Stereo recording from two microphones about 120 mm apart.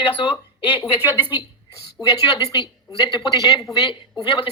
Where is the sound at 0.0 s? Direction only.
40° left (ahead or behind).